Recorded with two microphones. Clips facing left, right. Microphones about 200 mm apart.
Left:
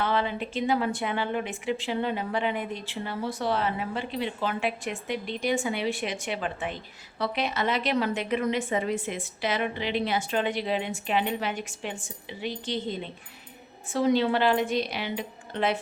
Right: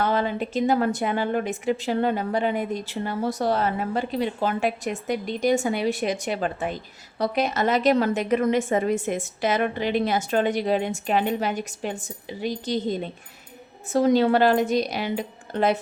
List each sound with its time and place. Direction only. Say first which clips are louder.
0.0 s a woman's voice: right 4 dB; 40° right (ahead or behind)